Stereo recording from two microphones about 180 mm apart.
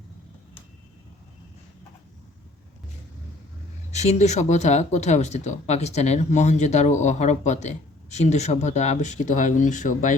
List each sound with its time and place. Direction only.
3.9 s speech: 40° left (ahead or behind)